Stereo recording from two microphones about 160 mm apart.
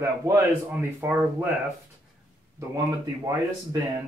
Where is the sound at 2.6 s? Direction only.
20° right (ahead or behind).